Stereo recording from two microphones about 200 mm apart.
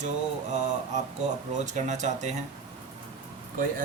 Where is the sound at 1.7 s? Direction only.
35° right (ahead or behind).